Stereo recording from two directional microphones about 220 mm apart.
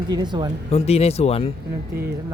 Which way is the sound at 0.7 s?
30° left (ahead or behind).